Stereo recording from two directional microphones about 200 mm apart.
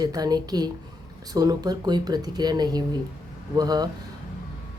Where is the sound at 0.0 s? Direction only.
20° right (ahead or behind).